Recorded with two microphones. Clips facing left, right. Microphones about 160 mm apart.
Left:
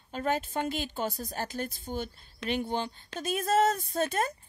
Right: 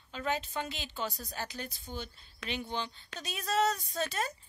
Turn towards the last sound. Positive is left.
turn(degrees=55)  # may be behind; listen again after turning